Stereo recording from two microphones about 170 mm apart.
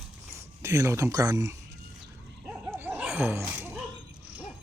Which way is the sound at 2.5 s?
10° right (ahead or behind).